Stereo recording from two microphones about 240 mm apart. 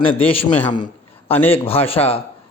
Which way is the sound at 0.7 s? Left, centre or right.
Centre.